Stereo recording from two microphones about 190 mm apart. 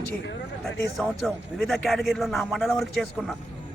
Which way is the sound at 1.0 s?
Centre (ahead or behind).